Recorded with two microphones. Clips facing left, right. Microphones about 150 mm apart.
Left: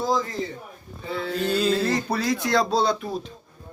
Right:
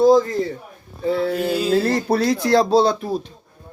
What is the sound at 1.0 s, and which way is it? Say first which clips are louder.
Speech: right 9 dB; 40° right (ahead or behind).